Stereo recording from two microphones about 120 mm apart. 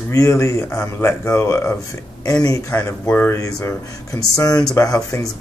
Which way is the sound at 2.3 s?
35° left (ahead or behind).